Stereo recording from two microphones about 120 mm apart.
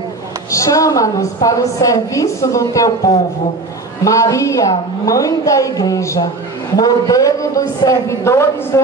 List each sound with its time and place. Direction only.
0.5 s a woman's voice: 25° left (ahead or behind)